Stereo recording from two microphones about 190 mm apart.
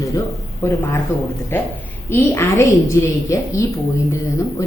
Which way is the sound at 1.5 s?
10° left (ahead or behind).